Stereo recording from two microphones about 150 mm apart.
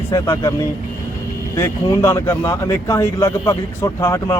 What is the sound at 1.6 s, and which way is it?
Speech, 20° left (ahead or behind).